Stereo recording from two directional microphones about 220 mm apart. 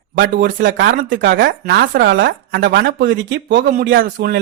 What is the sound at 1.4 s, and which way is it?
Speech, 45° right (ahead or behind).